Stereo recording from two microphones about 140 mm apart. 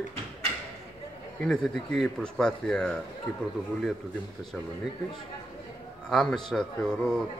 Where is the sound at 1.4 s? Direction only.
Centre (ahead or behind).